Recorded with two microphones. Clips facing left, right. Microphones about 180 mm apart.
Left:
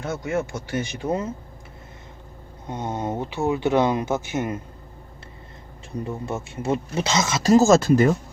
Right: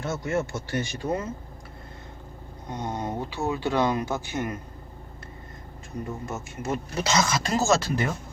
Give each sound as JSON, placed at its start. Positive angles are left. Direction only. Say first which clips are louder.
{"t": 0.0, "sound": "speech", "louder": "left 2 dB", "side_deg": 15}
{"t": 2.6, "sound": "speech", "louder": "left 3 dB", "side_deg": 20}
{"t": 6.2, "sound": "speech", "louder": "left 8 dB", "side_deg": 30}
{"t": 7.5, "sound": "speech", "louder": "left 10 dB", "side_deg": 50}